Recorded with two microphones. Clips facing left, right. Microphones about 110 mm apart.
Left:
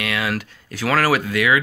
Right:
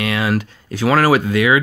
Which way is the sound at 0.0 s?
30° right (ahead or behind).